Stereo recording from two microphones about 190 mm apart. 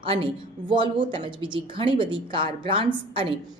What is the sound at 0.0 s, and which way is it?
A woman's voice, 30° right (ahead or behind).